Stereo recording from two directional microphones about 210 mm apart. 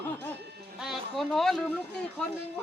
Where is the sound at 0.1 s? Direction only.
10° left (ahead or behind).